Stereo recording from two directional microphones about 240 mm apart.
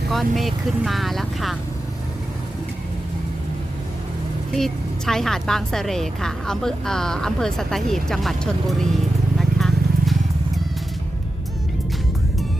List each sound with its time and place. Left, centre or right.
0.1 s a woman's voice: centre
4.5 s a woman's voice: centre
9.4 s horse: centre